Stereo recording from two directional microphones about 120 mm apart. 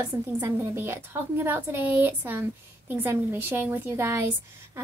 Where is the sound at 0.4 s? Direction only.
20° right (ahead or behind).